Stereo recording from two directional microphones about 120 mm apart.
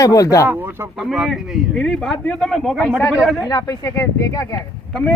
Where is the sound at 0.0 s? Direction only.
30° left (ahead or behind).